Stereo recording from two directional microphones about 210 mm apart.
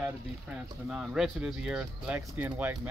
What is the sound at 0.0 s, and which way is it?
Speech, 5° right (ahead or behind).